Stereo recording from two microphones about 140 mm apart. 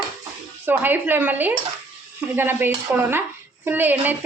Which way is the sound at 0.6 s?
15° right (ahead or behind).